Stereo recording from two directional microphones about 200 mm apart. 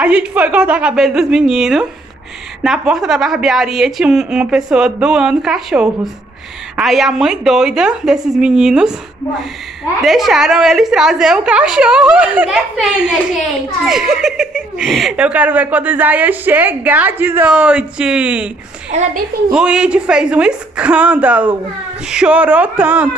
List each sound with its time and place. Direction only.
0.0 s speech: 5° right (ahead or behind)
10.0 s speech: centre (ahead or behind)
19.5 s speech: 5° right (ahead or behind)